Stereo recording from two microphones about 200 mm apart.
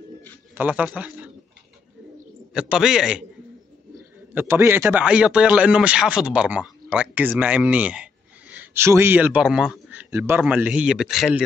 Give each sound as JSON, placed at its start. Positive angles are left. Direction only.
{"t": 0.2, "sound": "a sound", "side_deg": -10}
{"t": 2.5, "sound": "a man's voice", "side_deg": -5}
{"t": 4.3, "sound": "a man's voice", "side_deg": -10}